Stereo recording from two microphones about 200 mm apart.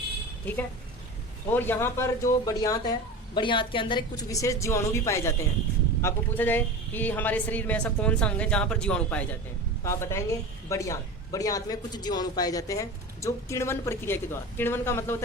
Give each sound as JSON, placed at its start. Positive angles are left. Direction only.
{"t": 1.5, "sound": "speech", "side_deg": 10}